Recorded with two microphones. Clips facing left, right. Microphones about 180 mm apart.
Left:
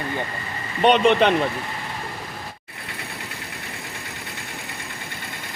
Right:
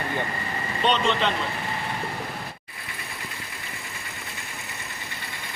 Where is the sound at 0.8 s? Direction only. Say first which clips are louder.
Left 8 dB; 60° left (ahead or behind).